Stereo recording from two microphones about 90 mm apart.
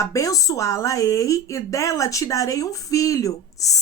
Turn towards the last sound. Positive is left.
turn(degrees=40)  # may be behind; listen again after turning